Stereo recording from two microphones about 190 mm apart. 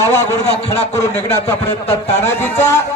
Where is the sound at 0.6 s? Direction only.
35° left (ahead or behind).